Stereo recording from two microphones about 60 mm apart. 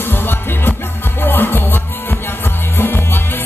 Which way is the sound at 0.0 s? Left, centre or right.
Left.